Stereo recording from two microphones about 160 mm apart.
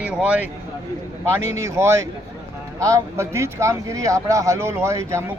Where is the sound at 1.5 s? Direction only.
20° right (ahead or behind).